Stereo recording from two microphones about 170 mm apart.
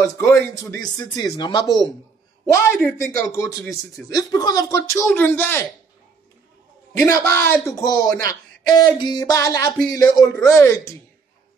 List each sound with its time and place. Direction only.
0.0 s speech: 20° left (ahead or behind)
2.9 s speech: 15° left (ahead or behind)
7.1 s speech: 15° left (ahead or behind)